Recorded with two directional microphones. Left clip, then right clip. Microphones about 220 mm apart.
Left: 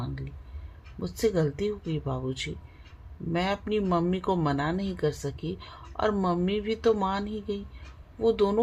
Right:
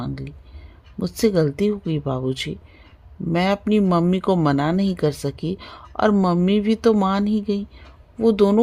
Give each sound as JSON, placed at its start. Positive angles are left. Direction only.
{"t": 0.9, "sound": "speech", "side_deg": -50}